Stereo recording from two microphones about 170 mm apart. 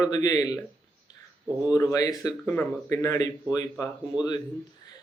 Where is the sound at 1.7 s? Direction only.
20° left (ahead or behind).